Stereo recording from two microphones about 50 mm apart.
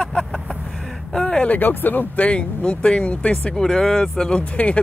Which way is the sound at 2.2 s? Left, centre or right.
Left.